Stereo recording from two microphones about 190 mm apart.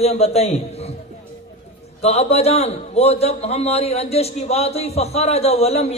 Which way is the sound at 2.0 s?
35° left (ahead or behind).